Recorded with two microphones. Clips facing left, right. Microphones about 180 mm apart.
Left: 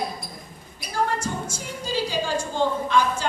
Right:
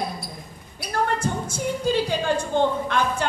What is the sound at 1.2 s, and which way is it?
A woman's voice, 60° right (ahead or behind).